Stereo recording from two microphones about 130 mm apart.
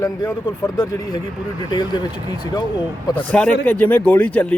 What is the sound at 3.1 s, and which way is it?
Speech, 10° left (ahead or behind).